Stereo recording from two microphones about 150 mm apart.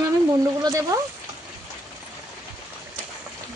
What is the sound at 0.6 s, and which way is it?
Speech, 25° right (ahead or behind).